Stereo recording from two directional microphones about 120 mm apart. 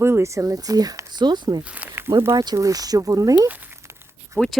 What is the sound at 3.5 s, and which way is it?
Crumpling, 15° right (ahead or behind).